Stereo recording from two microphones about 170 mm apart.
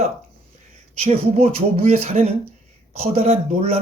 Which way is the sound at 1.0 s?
35° right (ahead or behind).